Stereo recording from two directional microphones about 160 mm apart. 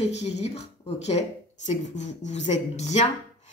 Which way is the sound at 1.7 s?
45° left (ahead or behind).